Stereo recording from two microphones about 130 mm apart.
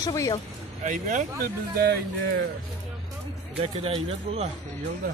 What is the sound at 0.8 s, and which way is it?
Speech, 75° right (ahead or behind).